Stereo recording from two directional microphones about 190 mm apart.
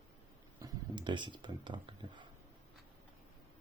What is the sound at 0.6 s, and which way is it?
Speech, 25° right (ahead or behind).